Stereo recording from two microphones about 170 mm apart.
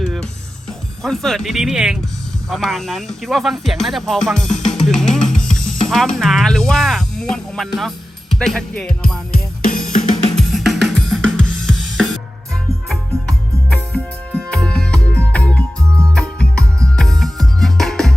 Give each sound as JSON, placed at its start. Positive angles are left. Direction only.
{"t": 0.0, "sound": "music", "side_deg": 0}
{"t": 1.0, "sound": "speech", "side_deg": 0}
{"t": 9.6, "sound": "drum kit", "side_deg": 50}
{"t": 10.3, "sound": "drum kit", "side_deg": 0}
{"t": 12.9, "sound": "music", "side_deg": 5}